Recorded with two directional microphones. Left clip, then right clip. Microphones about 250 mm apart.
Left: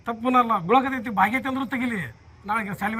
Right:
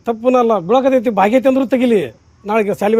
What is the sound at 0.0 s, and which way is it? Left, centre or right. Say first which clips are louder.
A man's voice: right 8 dB; right.